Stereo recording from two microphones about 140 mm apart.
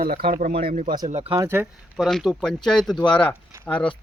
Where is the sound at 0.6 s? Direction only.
90° right.